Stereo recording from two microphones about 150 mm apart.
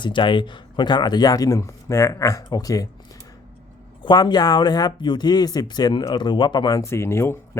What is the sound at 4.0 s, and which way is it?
Speech, 30° left (ahead or behind).